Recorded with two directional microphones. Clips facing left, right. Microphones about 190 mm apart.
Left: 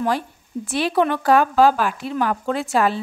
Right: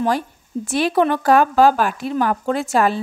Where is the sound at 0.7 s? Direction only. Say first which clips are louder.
Right 2 dB; 45° right (ahead or behind).